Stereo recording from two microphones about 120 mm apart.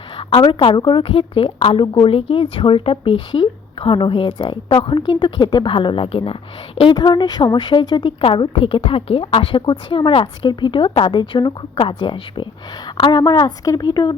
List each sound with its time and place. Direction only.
0.2 s a sound: 55° left (ahead or behind)
0.4 s a woman's voice: 40° left (ahead or behind)
6.9 s a woman's voice: 40° left (ahead or behind)